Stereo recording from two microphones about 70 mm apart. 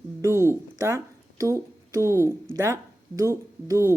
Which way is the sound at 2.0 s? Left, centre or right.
Right.